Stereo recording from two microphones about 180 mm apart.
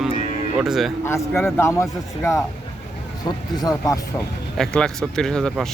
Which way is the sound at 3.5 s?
20° left (ahead or behind).